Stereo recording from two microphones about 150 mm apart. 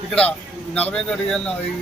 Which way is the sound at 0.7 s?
5° left (ahead or behind).